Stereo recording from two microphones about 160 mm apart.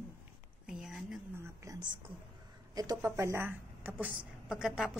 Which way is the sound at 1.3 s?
15° right (ahead or behind).